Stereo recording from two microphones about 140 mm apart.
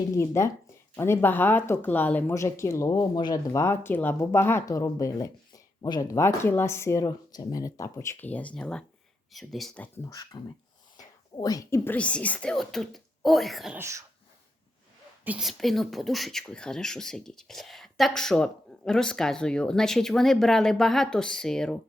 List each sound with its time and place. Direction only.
0.1 s speech: 20° left (ahead or behind)
11.4 s speech: 25° left (ahead or behind)
11.9 s speech: 10° left (ahead or behind)
13.7 s cough: 20° right (ahead or behind)
15.2 s speech: 10° right (ahead or behind)
15.4 s speech: centre (ahead or behind)